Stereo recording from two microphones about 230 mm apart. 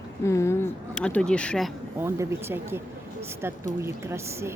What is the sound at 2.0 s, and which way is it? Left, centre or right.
Speech, centre.